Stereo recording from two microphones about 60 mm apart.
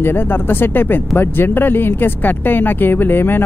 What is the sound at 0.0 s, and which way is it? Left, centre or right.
Speech, left.